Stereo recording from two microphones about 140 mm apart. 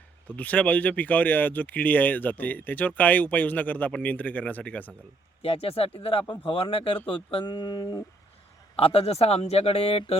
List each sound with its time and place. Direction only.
0.3 s speech: 10° left (ahead or behind)
5.4 s speech: 45° left (ahead or behind)
8.7 s a man's voice: 45° left (ahead or behind)